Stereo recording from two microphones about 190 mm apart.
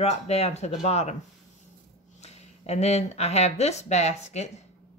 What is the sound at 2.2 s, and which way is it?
A woman's voice, 35° left (ahead or behind).